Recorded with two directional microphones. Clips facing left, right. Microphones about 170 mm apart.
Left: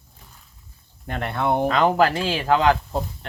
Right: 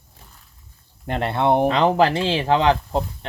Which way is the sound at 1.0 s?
30° right (ahead or behind).